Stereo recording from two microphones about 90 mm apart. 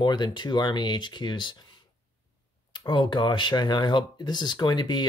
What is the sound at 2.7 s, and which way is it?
Speech, 55° left (ahead or behind).